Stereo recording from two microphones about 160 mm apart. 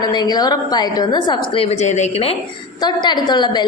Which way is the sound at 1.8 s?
45° left (ahead or behind).